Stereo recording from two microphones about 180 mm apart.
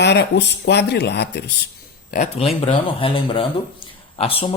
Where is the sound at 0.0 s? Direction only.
70° left (ahead or behind).